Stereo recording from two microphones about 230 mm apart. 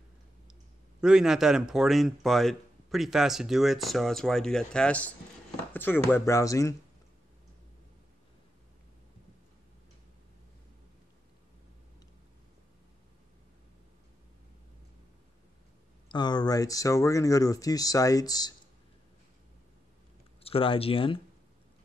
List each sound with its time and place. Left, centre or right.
1.0 s speech: centre
16.1 s speech: centre
20.4 s speech: left